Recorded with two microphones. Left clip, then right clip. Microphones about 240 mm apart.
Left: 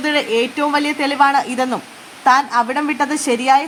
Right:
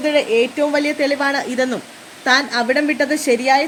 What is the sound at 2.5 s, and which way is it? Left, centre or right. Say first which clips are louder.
Speech: even; left.